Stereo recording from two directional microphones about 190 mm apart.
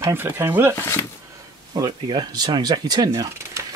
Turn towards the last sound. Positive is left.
turn(degrees=-15)  # may be behind; listen again after turning